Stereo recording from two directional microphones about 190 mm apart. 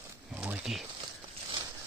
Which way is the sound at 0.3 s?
5° right (ahead or behind).